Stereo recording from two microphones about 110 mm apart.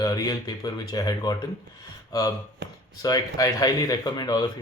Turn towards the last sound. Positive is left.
turn(degrees=35)  # may be behind; listen again after turning